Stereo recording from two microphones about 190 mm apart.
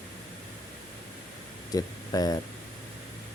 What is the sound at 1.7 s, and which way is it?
Speech, 20° left (ahead or behind).